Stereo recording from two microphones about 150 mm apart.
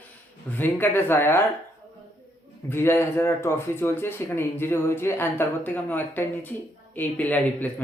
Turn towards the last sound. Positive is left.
turn(degrees=10)  # may be behind; listen again after turning